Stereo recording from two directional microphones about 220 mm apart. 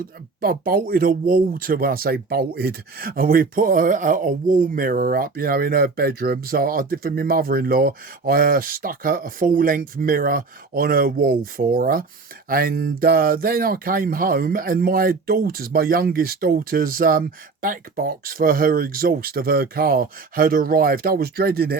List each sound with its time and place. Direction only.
0.4 s speech: 40° right (ahead or behind)